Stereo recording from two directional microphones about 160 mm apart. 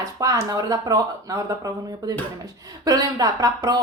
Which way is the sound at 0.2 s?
20° right (ahead or behind).